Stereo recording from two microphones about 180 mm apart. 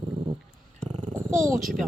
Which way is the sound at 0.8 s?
40° right (ahead or behind).